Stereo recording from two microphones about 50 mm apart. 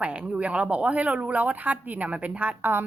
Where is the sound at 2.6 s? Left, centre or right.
Right.